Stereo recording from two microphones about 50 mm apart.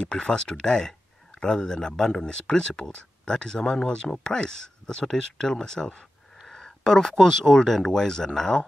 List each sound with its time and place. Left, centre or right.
0.0 s speech: centre